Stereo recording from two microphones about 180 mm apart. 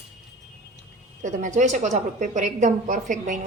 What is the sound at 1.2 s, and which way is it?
A woman's voice, 40° right (ahead or behind).